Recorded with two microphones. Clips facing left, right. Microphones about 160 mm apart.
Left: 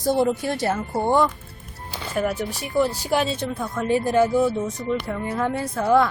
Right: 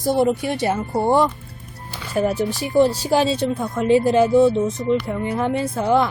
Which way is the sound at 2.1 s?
30° right (ahead or behind).